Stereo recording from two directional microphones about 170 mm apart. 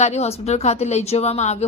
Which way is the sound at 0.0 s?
40° left (ahead or behind).